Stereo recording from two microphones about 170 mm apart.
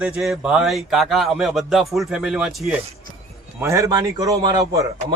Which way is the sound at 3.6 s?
15° right (ahead or behind).